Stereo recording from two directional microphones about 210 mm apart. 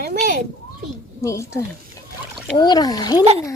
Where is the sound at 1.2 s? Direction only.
15° left (ahead or behind).